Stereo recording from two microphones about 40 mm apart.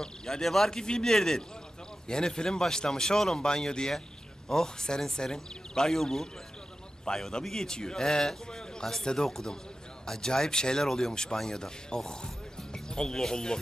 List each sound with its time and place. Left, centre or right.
0.0 s a man's voice: centre
0.7 s speech: centre